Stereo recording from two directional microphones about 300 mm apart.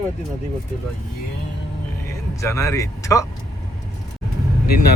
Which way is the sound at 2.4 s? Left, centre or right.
Centre.